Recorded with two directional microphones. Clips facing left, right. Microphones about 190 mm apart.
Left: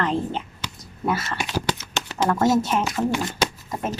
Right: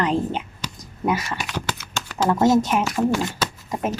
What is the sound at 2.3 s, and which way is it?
Speech, 15° right (ahead or behind).